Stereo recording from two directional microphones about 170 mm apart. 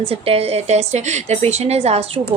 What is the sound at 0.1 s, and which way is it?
A woman's voice, 35° right (ahead or behind).